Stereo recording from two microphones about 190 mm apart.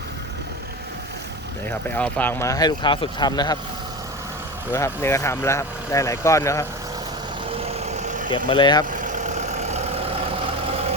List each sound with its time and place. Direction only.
2.0 s speech: 10° left (ahead or behind)
4.7 s speech: 15° left (ahead or behind)
8.4 s speech: 25° left (ahead or behind)
9.0 s vehicle: 40° right (ahead or behind)